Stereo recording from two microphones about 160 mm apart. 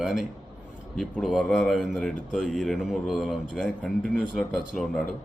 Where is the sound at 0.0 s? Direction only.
Centre (ahead or behind).